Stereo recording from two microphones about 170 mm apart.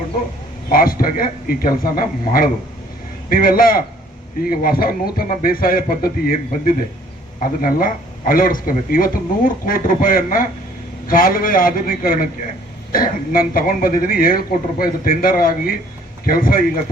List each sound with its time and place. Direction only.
0.7 s speech: 60° left (ahead or behind)